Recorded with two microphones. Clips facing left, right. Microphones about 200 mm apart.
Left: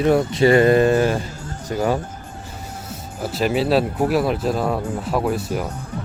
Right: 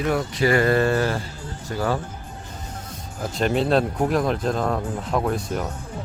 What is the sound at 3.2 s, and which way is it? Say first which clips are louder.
Speech: left 2 dB; 5° left (ahead or behind).